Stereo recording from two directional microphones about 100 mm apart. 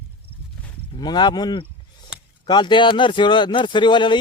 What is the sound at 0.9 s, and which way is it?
Speech, 45° left (ahead or behind).